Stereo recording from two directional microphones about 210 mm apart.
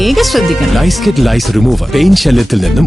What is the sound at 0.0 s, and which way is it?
Speech, centre (ahead or behind).